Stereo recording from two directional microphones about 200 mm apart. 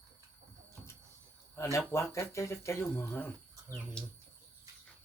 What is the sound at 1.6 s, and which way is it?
Speech, 15° left (ahead or behind).